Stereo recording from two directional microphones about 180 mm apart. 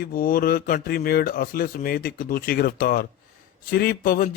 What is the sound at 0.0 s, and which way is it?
Speech, 55° left (ahead or behind).